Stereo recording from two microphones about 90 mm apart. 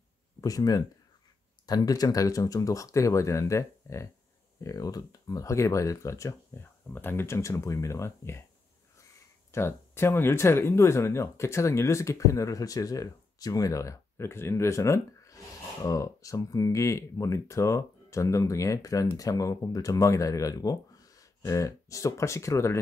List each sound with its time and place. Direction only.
0.4 s speech: 45° left (ahead or behind)
9.5 s speech: 30° left (ahead or behind)